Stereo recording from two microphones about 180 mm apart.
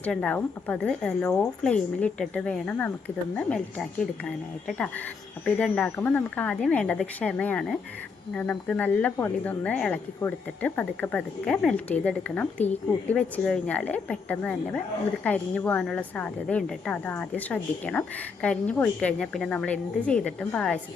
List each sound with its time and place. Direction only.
0.0 s a woman's voice: 5° left (ahead or behind)